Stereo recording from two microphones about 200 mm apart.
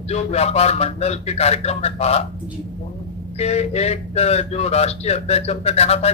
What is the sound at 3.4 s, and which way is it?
A man's voice, 30° left (ahead or behind).